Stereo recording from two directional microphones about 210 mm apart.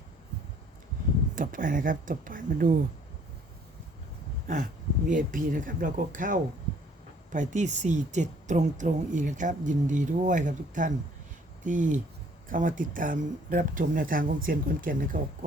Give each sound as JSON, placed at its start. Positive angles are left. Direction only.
{"t": 1.4, "sound": "a woman's voice", "side_deg": -40}
{"t": 5.0, "sound": "a woman's voice", "side_deg": -40}